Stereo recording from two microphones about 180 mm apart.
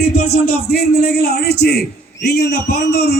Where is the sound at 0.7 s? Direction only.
60° left (ahead or behind).